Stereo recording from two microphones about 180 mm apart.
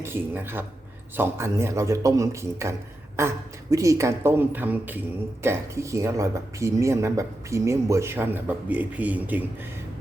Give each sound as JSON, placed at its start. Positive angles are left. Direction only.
{"t": 0.0, "sound": "speech", "side_deg": -10}